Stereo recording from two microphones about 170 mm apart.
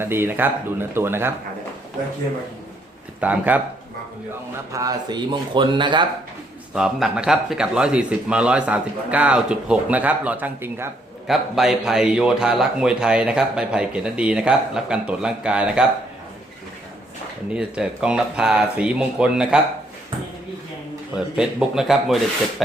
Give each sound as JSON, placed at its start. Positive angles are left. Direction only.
{"t": 0.0, "sound": "speech", "side_deg": -15}
{"t": 3.2, "sound": "speech", "side_deg": -10}
{"t": 4.7, "sound": "speech", "side_deg": -20}
{"t": 6.7, "sound": "speech", "side_deg": -5}
{"t": 11.3, "sound": "a man's voice", "side_deg": -5}
{"t": 17.5, "sound": "a man's voice", "side_deg": -5}
{"t": 21.3, "sound": "a man's voice", "side_deg": 0}